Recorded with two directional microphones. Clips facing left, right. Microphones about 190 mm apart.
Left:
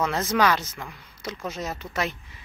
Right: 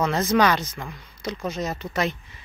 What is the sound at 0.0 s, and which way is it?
Speech, 5° left (ahead or behind).